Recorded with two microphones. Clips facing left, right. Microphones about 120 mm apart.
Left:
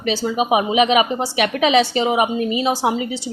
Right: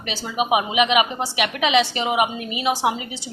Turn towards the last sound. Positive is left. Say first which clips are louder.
# left 3 dB
turn(degrees=30)  # may be behind; listen again after turning